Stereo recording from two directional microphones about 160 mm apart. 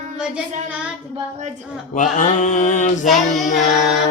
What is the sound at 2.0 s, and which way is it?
Mantra, 50° left (ahead or behind).